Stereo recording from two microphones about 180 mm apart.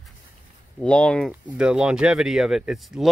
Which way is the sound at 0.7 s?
5° left (ahead or behind).